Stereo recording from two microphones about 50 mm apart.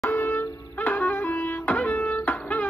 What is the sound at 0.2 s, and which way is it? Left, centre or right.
Wind instrument, left.